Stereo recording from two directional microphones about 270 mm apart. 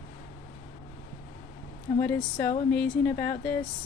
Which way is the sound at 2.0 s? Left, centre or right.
Centre.